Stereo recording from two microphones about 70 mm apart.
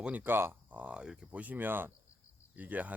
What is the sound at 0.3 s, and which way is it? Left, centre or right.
Speech, right.